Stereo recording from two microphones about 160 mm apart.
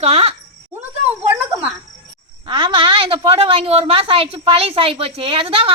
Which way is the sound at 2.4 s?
30° right (ahead or behind).